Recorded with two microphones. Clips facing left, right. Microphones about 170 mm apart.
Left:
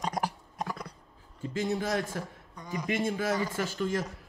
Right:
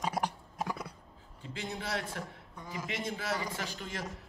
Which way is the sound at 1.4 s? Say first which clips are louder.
Left 10 dB; 40° left (ahead or behind).